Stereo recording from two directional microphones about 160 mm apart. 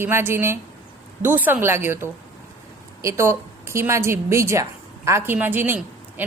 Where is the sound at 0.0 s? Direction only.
15° right (ahead or behind).